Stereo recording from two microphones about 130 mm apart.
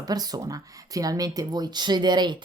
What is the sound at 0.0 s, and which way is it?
Speech, 30° right (ahead or behind).